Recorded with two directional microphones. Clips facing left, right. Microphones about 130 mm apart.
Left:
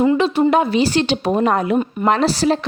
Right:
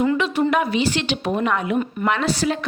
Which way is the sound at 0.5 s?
30° left (ahead or behind).